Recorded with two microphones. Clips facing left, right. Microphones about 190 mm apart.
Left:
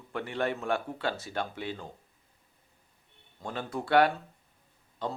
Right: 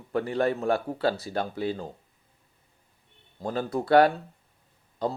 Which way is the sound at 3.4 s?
40° right (ahead or behind).